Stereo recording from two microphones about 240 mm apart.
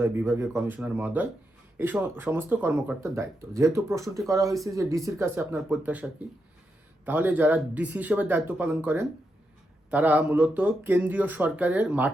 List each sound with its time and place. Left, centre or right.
0.0 s speech: centre